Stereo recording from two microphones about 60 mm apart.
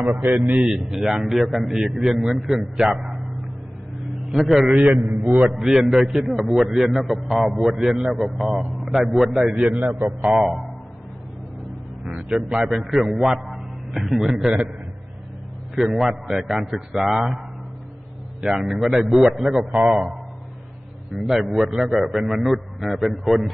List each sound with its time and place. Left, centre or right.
0.1 s a man's voice: right
0.5 s a man's voice: centre
4.3 s a man's voice: centre
4.7 s a man's voice: right
5.5 s a man's voice: centre
9.8 s a man's voice: right
10.2 s a man's voice: centre
12.2 s a man's voice: centre
15.7 s a man's voice: centre
18.4 s a man's voice: centre
21.3 s a man's voice: centre